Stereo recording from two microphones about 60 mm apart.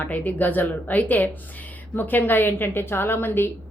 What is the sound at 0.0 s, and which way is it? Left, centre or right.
A woman's voice, left.